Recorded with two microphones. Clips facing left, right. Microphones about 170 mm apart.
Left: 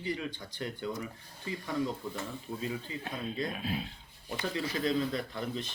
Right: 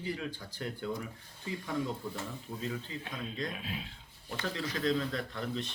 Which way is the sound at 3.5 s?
40° left (ahead or behind).